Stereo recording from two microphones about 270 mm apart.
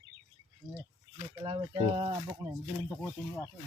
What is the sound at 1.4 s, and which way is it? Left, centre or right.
Speech, centre.